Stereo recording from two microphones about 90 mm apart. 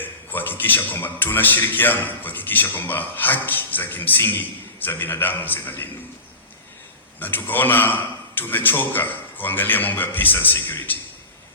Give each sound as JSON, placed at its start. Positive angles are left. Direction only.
{"t": 0.0, "sound": "a man's voice", "side_deg": 20}
{"t": 7.2, "sound": "a man's voice", "side_deg": 20}